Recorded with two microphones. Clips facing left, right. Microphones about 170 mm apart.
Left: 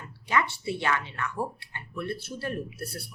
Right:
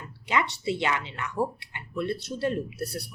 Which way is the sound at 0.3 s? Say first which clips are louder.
Right 1 dB; 20° right (ahead or behind).